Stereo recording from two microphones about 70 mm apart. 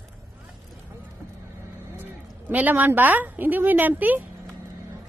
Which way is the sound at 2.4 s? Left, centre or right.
Right.